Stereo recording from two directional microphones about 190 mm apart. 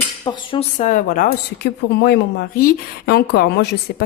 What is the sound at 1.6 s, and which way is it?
Speech, 60° left (ahead or behind).